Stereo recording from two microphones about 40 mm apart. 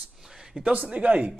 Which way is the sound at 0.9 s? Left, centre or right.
Right.